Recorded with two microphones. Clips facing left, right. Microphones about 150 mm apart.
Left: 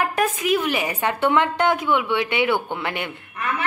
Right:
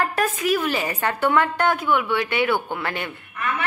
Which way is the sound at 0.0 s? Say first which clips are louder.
Left 1 dB; 15° left (ahead or behind).